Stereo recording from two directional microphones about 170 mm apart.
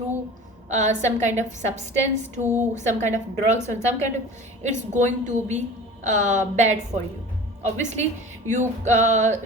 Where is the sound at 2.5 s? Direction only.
45° right (ahead or behind).